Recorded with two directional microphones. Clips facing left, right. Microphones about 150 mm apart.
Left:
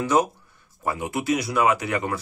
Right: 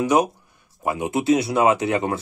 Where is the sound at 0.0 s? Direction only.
15° right (ahead or behind).